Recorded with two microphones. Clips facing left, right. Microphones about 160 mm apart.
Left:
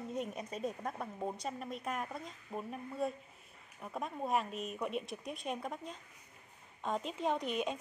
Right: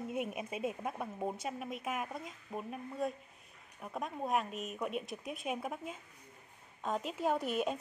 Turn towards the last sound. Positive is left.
turn(degrees=-5)  # may be behind; listen again after turning